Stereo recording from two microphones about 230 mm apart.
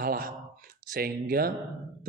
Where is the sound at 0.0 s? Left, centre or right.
Right.